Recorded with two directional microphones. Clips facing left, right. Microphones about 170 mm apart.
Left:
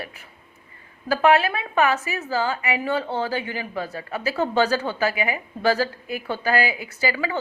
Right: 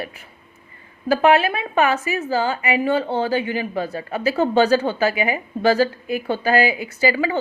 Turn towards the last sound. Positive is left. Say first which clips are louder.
# right 5 dB
turn(degrees=-20)  # may be behind; listen again after turning